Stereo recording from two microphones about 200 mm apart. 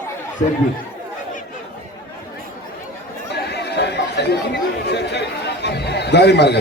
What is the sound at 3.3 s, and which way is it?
Speech, 55° left (ahead or behind).